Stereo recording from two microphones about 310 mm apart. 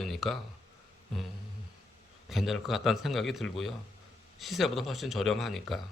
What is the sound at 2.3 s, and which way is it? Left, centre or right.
Speech, centre.